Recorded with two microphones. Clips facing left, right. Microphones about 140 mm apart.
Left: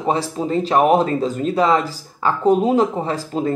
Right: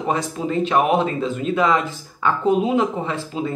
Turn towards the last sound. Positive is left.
turn(degrees=45)  # may be behind; listen again after turning